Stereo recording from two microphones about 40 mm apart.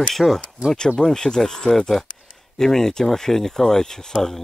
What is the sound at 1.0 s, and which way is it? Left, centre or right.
Speech, centre.